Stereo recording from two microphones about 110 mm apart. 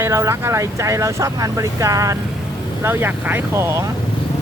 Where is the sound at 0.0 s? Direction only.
25° right (ahead or behind).